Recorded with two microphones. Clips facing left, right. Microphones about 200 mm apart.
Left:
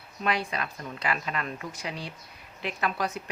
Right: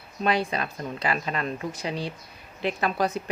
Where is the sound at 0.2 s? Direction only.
30° right (ahead or behind).